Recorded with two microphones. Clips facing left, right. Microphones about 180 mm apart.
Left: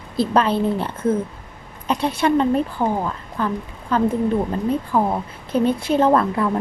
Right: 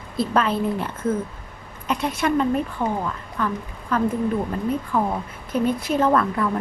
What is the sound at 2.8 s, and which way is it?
Speech, 50° left (ahead or behind).